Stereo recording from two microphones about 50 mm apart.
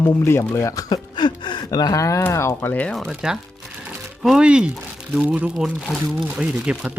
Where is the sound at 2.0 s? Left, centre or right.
Left.